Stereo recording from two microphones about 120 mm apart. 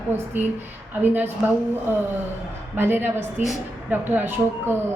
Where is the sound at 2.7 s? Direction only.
20° right (ahead or behind).